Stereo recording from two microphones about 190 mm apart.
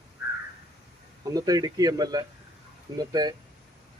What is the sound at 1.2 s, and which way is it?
Speech, 20° right (ahead or behind).